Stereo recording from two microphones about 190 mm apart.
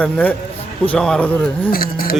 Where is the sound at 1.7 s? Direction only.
50° left (ahead or behind).